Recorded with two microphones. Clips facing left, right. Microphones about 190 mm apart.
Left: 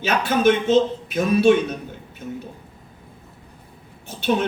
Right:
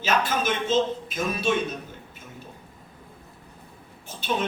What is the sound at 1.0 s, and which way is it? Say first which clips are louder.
Speech: left 10 dB; 65° left (ahead or behind).